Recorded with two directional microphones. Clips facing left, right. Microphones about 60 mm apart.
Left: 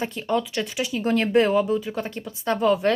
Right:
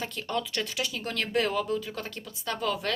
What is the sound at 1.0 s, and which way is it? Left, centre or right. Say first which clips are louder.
A woman's voice: left 10 dB; left.